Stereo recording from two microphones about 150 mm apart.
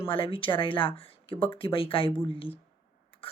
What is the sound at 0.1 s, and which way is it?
Speech, 35° left (ahead or behind).